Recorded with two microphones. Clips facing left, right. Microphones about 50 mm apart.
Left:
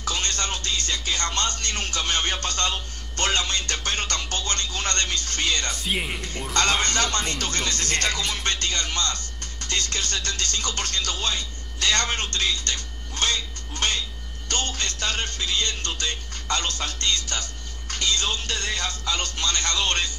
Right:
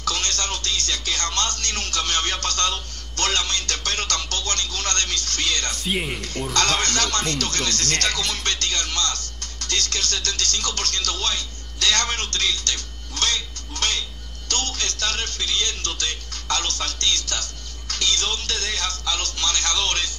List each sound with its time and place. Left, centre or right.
0.0 s music: left
5.9 s speech: centre
6.5 s speech: left
14.5 s music: left